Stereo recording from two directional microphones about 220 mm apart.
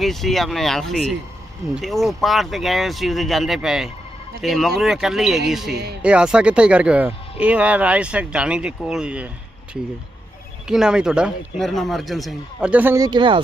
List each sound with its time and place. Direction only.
0.0 s speech: centre (ahead or behind)
5.7 s speech: 45° right (ahead or behind)
6.0 s speech: 5° right (ahead or behind)
10.7 s speech: 5° right (ahead or behind); by 13.4 s 20° right (ahead or behind)